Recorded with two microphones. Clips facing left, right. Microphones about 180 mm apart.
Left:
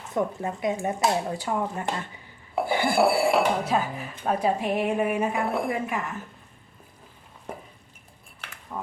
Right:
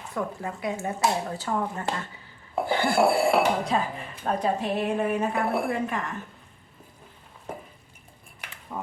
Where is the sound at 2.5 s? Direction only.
10° left (ahead or behind).